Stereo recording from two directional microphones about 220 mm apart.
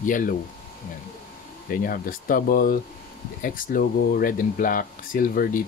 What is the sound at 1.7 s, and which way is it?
Speech, 40° left (ahead or behind).